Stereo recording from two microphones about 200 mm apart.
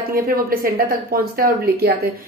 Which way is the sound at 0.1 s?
45° right (ahead or behind).